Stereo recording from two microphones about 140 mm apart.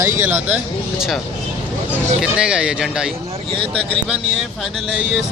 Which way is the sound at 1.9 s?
5° right (ahead or behind).